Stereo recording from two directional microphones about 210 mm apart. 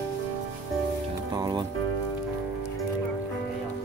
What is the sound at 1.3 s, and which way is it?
Music, 20° right (ahead or behind).